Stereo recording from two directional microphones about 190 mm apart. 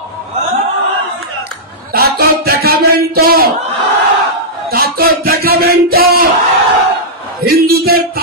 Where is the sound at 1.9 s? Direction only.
55° right (ahead or behind).